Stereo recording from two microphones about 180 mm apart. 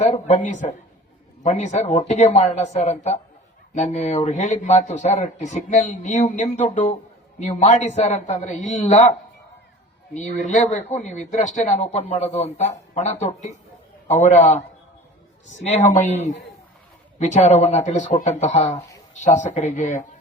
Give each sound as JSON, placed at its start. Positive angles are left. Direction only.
{"t": 0.0, "sound": "a man's voice", "side_deg": 40}
{"t": 10.2, "sound": "a man's voice", "side_deg": 40}
{"t": 15.6, "sound": "a man's voice", "side_deg": 40}
{"t": 17.2, "sound": "a man's voice", "side_deg": 40}